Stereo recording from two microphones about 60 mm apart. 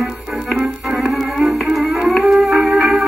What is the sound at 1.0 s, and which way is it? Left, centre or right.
Music, centre.